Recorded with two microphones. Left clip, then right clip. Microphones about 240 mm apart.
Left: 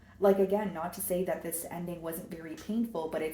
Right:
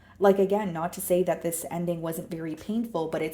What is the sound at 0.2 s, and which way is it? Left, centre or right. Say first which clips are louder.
A woman's voice: right 4 dB; right.